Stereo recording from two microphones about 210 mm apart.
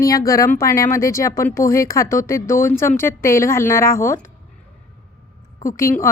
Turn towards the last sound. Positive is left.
turn(degrees=15)  # may be behind; listen again after turning